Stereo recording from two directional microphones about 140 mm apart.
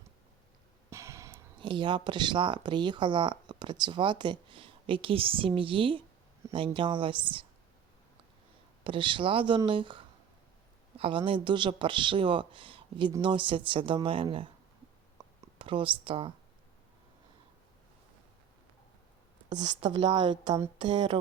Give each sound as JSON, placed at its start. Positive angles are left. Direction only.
{"t": 0.9, "sound": "a sound", "side_deg": -20}
{"t": 1.6, "sound": "speech", "side_deg": -35}
{"t": 8.8, "sound": "speech", "side_deg": -35}
{"t": 15.5, "sound": "speech", "side_deg": -35}
{"t": 19.5, "sound": "speech", "side_deg": -30}